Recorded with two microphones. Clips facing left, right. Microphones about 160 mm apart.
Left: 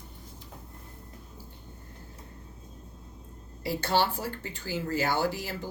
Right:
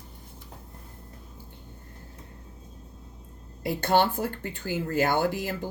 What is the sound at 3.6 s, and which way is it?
Speech, 55° right (ahead or behind).